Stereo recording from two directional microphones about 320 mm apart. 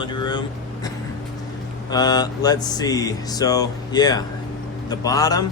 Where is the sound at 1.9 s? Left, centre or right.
Centre.